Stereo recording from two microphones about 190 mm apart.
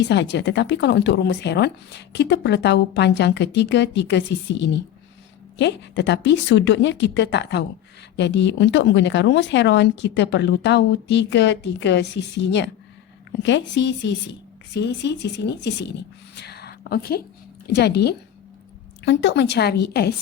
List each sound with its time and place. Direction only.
0.0 s a woman's voice: 65° left (ahead or behind)